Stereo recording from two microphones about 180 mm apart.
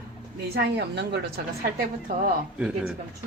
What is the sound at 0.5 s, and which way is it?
Speech, 65° right (ahead or behind).